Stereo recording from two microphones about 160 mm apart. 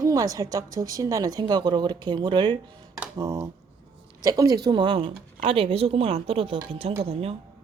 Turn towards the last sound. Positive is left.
turn(degrees=-40)  # may be behind; listen again after turning